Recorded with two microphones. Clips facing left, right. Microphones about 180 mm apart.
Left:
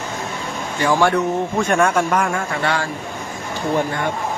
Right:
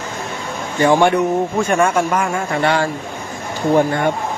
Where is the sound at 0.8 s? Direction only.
20° right (ahead or behind).